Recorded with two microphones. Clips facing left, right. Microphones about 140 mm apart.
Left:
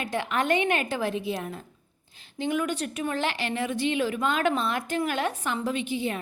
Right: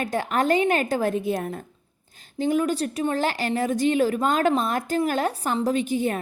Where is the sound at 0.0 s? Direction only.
40° right (ahead or behind).